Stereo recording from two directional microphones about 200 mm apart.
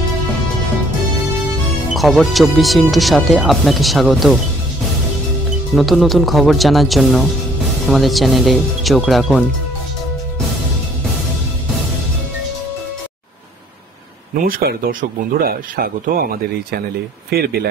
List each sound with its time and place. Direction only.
2.0 s speech: centre (ahead or behind)
5.8 s speech: centre (ahead or behind)
14.3 s speech: 45° right (ahead or behind)
17.3 s speech: 50° right (ahead or behind)